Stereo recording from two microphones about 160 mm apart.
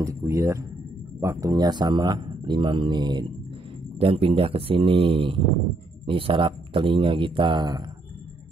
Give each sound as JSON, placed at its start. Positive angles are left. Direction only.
{"t": 0.0, "sound": "speech", "side_deg": -20}